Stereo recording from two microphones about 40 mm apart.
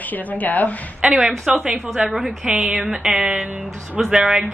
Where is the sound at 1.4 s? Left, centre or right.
Right.